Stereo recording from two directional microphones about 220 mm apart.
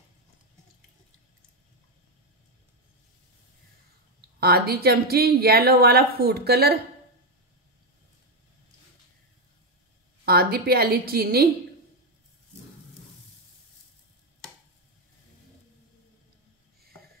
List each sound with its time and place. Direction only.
4.4 s a woman's voice: 45° right (ahead or behind)
10.2 s a woman's voice: 45° right (ahead or behind)